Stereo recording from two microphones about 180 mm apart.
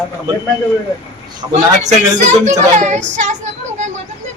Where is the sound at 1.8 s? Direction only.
40° right (ahead or behind).